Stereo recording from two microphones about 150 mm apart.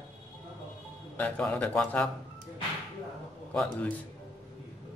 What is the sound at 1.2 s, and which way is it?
Speech, 10° left (ahead or behind).